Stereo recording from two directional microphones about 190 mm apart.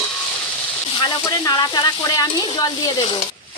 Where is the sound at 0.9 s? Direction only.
20° left (ahead or behind).